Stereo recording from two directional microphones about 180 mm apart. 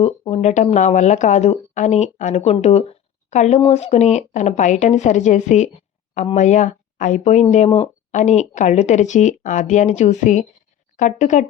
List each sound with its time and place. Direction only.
0.0 s a woman's voice: 35° left (ahead or behind)